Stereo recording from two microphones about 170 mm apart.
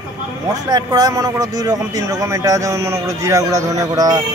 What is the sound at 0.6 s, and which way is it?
A man's voice, 20° right (ahead or behind).